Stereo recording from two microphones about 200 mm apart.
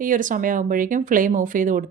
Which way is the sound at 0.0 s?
40° right (ahead or behind).